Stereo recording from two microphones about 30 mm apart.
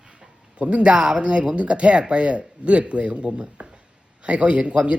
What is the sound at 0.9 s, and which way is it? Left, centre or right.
Speech, right.